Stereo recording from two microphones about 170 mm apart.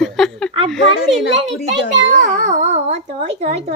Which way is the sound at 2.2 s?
50° right (ahead or behind).